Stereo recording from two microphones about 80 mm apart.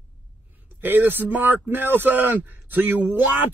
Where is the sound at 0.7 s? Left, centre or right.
Right.